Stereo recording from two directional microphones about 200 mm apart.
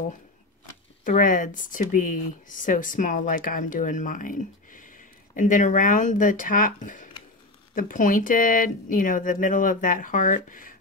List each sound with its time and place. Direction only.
1.0 s speech: 40° left (ahead or behind)